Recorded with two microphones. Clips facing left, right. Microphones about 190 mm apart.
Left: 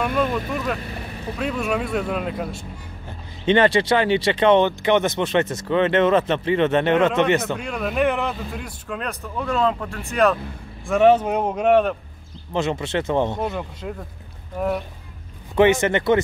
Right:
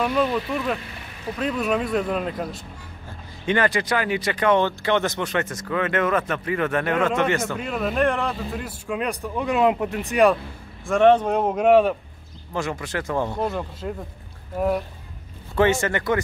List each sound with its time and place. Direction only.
0.0 s speech: centre (ahead or behind)
3.4 s speech: 25° left (ahead or behind)
7.5 s a man's voice: 5° right (ahead or behind)
10.9 s speech: 5° left (ahead or behind)
12.5 s speech: 25° left (ahead or behind)
13.4 s speech: centre (ahead or behind)
15.5 s speech: 20° left (ahead or behind)